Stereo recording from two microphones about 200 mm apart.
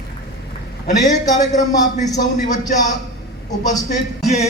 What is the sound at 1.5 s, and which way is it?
A man's voice, 35° left (ahead or behind).